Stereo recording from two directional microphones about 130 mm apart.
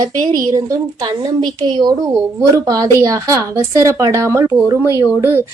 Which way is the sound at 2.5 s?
25° right (ahead or behind).